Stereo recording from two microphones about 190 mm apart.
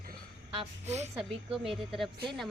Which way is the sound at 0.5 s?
35° right (ahead or behind).